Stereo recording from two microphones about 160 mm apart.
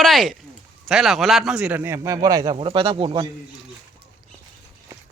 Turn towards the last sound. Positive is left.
turn(degrees=-30)  # may be behind; listen again after turning